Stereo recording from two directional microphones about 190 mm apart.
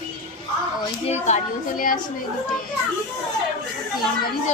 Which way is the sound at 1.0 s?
35° left (ahead or behind).